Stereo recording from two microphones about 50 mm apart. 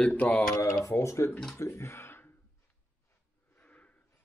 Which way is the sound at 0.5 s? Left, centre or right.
Left.